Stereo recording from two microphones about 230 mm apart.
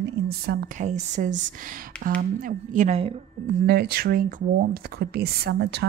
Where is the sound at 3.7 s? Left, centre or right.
Right.